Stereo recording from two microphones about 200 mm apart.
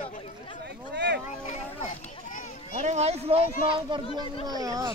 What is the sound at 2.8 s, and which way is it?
A child's voice, 35° right (ahead or behind).